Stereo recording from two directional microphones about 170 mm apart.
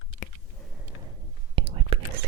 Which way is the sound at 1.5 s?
35° right (ahead or behind).